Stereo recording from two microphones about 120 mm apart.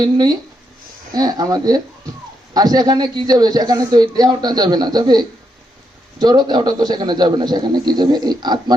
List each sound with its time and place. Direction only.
0.0 s a man's voice: 35° right (ahead or behind)